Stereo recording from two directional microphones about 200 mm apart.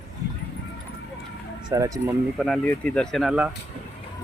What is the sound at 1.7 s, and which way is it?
Speech, 15° right (ahead or behind).